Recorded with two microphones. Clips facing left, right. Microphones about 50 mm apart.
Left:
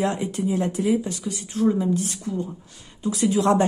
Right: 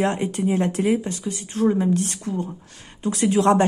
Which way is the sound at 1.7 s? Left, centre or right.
Right.